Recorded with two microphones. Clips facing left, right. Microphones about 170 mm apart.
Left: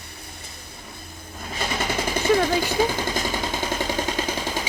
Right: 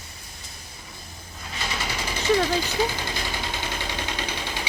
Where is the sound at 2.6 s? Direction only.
50° left (ahead or behind).